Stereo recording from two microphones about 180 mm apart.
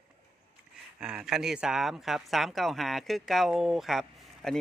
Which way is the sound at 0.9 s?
5° right (ahead or behind).